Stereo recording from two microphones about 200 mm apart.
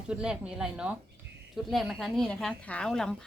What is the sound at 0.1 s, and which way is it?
A woman's voice, 5° right (ahead or behind).